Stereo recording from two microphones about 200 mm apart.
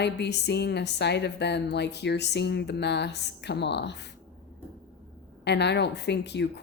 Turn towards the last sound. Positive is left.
turn(degrees=60)  # may be behind; listen again after turning